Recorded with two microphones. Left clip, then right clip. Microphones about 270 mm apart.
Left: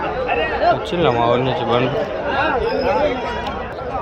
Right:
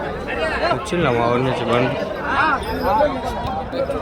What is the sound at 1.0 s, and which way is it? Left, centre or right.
Speech, centre.